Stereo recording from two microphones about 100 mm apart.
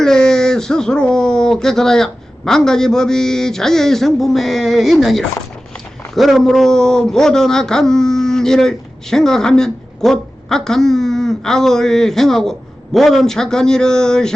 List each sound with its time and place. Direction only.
0.0 s speech: 5° left (ahead or behind)